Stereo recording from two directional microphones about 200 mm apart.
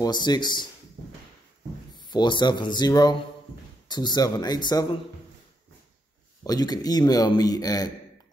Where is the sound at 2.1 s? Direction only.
20° left (ahead or behind).